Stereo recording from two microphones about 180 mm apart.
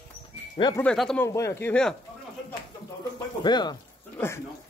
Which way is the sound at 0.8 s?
5° left (ahead or behind).